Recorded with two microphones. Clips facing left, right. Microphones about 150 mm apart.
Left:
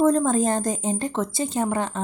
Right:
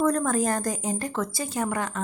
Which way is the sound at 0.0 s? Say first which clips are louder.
Left 4 dB; 25° left (ahead or behind).